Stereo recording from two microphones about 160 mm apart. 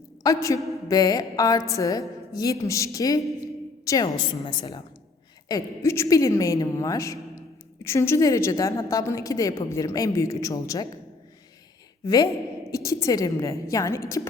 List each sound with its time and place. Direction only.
0.2 s a woman's voice: 20° left (ahead or behind)
12.0 s a woman's voice: 25° left (ahead or behind)